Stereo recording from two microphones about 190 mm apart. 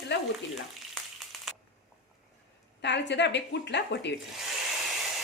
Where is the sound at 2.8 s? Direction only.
65° left (ahead or behind).